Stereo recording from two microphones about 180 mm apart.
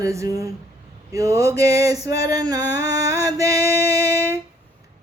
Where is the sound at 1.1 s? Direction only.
20° right (ahead or behind).